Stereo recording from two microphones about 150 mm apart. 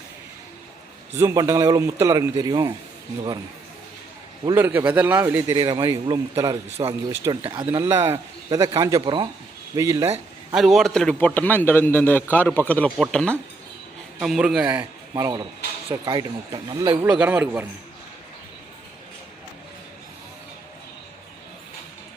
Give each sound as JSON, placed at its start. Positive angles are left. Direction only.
{"t": 1.1, "sound": "a man's voice", "side_deg": -20}
{"t": 4.5, "sound": "a man's voice", "side_deg": -15}
{"t": 7.4, "sound": "a man's voice", "side_deg": -40}
{"t": 7.7, "sound": "a man's voice", "side_deg": -20}
{"t": 9.7, "sound": "a man's voice", "side_deg": -20}
{"t": 10.5, "sound": "a man's voice", "side_deg": 0}
{"t": 15.1, "sound": "a man's voice", "side_deg": -25}
{"t": 17.1, "sound": "a man's voice", "side_deg": -5}